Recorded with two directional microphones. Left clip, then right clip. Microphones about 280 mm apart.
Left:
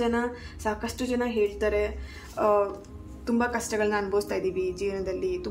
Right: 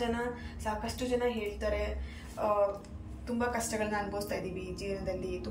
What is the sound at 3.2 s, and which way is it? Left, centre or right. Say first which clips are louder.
A woman's voice: left 6 dB; centre.